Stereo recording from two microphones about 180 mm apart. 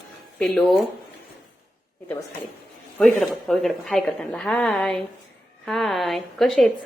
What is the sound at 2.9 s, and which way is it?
A woman's voice, 5° left (ahead or behind).